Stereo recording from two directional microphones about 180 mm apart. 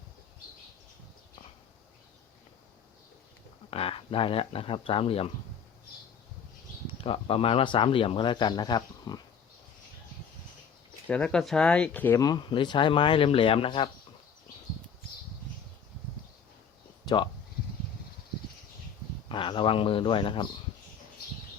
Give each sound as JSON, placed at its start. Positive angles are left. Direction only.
{"t": 3.7, "sound": "speech", "side_deg": 30}
{"t": 7.0, "sound": "speech", "side_deg": 30}
{"t": 11.1, "sound": "speech", "side_deg": 5}
{"t": 12.2, "sound": "speech", "side_deg": 25}
{"t": 19.3, "sound": "speech", "side_deg": 30}